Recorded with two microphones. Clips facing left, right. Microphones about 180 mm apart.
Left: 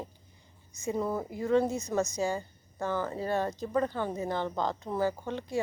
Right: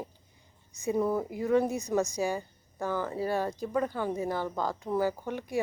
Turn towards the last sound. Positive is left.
turn(degrees=-15)  # may be behind; listen again after turning